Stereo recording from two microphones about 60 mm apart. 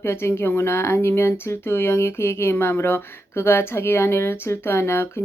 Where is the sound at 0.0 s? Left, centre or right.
Left.